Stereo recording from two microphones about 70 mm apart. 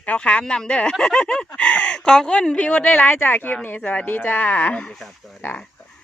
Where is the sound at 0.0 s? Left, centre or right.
Centre.